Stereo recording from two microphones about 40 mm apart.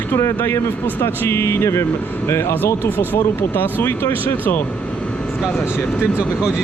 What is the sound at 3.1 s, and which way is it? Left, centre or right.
Speech, left.